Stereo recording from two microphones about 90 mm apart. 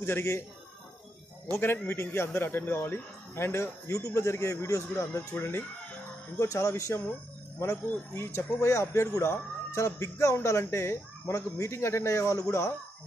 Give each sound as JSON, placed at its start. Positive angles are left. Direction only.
{"t": 0.0, "sound": "speech", "side_deg": 30}
{"t": 1.6, "sound": "speech", "side_deg": 25}
{"t": 5.4, "sound": "speech", "side_deg": 25}
{"t": 6.3, "sound": "speech", "side_deg": 35}